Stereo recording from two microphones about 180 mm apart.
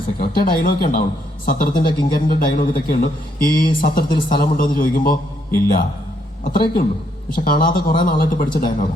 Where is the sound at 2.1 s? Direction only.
50° left (ahead or behind).